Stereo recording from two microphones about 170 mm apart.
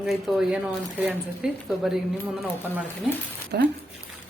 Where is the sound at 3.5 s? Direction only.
65° right (ahead or behind).